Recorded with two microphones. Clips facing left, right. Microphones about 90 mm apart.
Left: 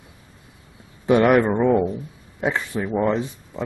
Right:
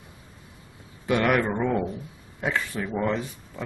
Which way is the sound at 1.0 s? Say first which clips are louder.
Left 7 dB; 25° left (ahead or behind).